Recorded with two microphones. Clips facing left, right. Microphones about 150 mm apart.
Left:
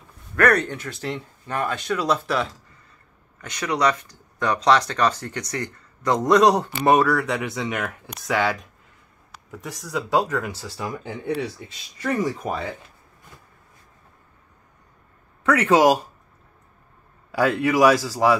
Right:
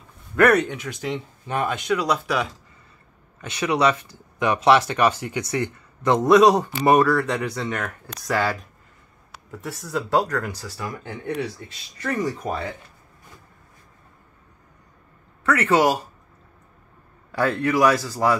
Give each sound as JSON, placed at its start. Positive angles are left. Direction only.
{"t": 0.4, "sound": "speech", "side_deg": -15}
{"t": 5.6, "sound": "speech", "side_deg": -25}
{"t": 6.2, "sound": "speech", "side_deg": -5}
{"t": 12.0, "sound": "a man's voice", "side_deg": 10}
{"t": 15.4, "sound": "a man's voice", "side_deg": 15}
{"t": 17.3, "sound": "a man's voice", "side_deg": 10}